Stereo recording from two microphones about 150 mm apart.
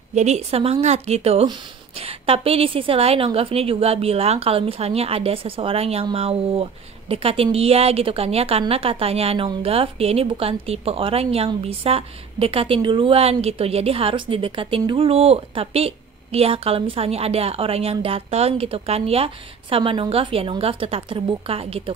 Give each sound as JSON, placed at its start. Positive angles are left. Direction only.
{"t": 0.1, "sound": "a woman's voice", "side_deg": -50}